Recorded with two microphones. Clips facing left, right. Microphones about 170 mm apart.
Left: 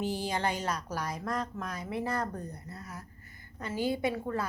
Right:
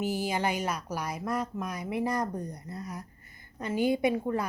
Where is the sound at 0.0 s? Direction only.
10° right (ahead or behind).